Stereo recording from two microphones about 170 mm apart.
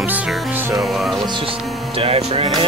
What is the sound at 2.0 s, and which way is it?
Music, 35° right (ahead or behind).